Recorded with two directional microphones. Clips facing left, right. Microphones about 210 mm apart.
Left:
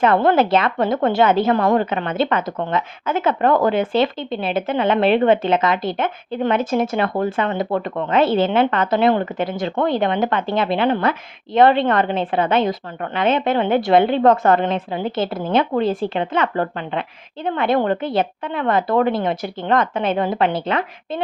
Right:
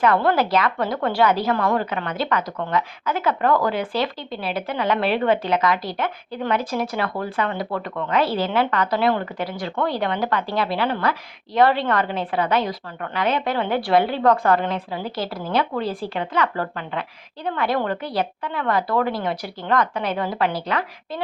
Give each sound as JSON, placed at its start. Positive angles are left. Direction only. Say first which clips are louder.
{"t": 0.0, "sound": "a woman's voice", "louder": "left 4 dB", "side_deg": 25}